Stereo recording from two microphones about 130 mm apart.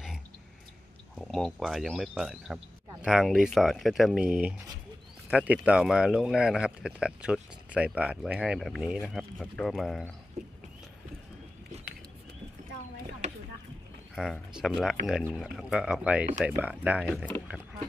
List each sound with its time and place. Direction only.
1.1 s speech: centre (ahead or behind)
14.1 s speech: 5° right (ahead or behind)
17.0 s speech: 5° left (ahead or behind)